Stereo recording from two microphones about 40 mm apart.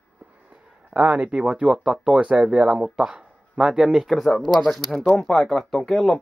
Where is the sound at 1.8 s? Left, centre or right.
Centre.